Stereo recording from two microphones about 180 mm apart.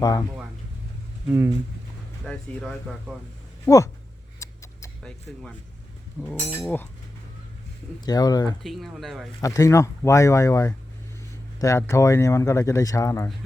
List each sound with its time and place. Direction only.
0.0 s speech: 20° left (ahead or behind)
1.3 s speech: 15° right (ahead or behind)
2.2 s speech: 5° left (ahead or behind)
3.7 s speech: 10° left (ahead or behind)
4.4 s a sound: 15° left (ahead or behind)
5.0 s speech: 5° left (ahead or behind)
8.0 s speech: 20° left (ahead or behind)
8.6 s speech: centre (ahead or behind)
9.4 s speech: 20° left (ahead or behind)